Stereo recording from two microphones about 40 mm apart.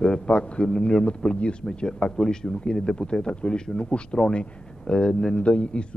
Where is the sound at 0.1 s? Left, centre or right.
Left.